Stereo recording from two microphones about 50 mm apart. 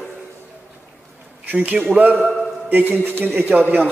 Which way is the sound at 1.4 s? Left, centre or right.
Right.